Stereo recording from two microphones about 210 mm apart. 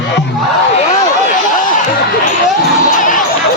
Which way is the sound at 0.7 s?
35° left (ahead or behind).